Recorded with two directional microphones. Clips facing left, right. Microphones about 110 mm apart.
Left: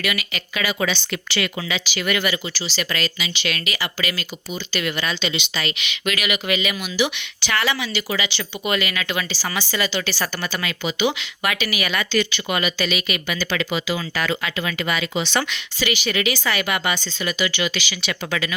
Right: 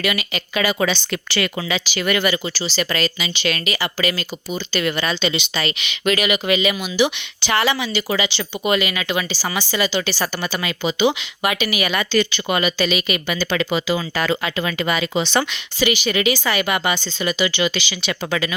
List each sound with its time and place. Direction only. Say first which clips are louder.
0.0 s speech: right 3 dB; 30° right (ahead or behind)